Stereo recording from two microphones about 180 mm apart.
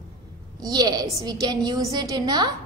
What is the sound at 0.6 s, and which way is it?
A woman's voice, 20° right (ahead or behind).